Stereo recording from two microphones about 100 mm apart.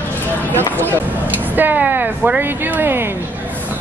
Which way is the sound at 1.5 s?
15° right (ahead or behind).